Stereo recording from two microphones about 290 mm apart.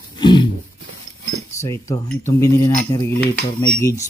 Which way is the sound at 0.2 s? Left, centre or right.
Centre.